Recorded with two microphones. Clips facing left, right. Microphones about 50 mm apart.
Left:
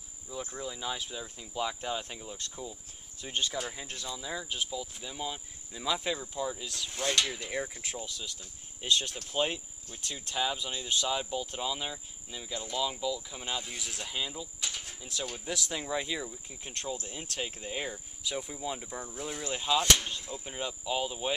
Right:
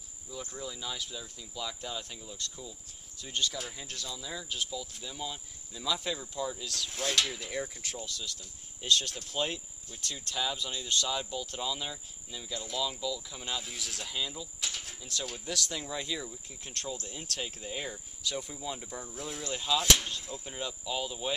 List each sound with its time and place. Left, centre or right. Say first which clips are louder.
0.3 s speech: left 2 dB; centre
7.5 s speech: left 1 dB; centre
14.6 s speech: right 2 dB; centre
19.4 s speech: left 2 dB; centre
19.8 s speech: even; centre